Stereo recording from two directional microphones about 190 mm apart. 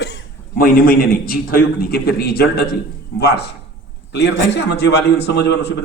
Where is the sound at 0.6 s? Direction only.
50° left (ahead or behind).